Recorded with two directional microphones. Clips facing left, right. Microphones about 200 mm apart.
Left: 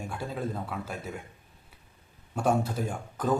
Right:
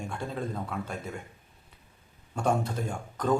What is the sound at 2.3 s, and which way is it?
A man's voice, 5° left (ahead or behind).